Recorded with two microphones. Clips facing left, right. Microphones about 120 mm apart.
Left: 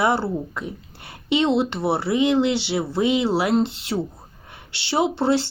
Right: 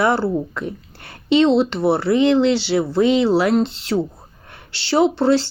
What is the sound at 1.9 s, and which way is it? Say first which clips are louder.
Speech: right 4 dB; 20° left (ahead or behind).